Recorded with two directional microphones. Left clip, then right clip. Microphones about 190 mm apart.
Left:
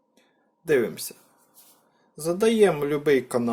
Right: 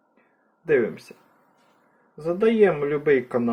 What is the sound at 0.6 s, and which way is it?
Speech, 10° left (ahead or behind).